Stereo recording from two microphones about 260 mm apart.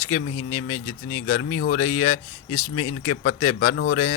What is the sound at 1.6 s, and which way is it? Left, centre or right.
Speech, left.